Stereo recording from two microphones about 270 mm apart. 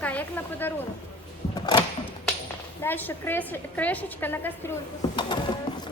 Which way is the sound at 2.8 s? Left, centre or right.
Centre.